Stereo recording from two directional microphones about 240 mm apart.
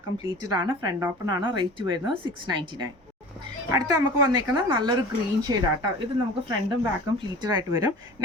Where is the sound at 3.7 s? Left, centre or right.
Centre.